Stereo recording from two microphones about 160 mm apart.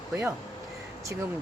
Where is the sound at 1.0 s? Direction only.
20° right (ahead or behind).